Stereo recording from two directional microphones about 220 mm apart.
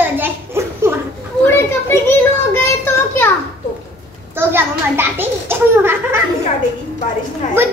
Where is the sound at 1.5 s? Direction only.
10° left (ahead or behind).